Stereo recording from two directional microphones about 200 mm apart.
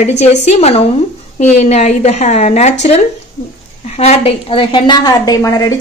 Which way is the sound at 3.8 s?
35° left (ahead or behind).